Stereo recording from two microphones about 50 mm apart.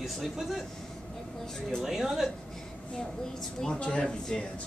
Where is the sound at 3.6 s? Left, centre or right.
Centre.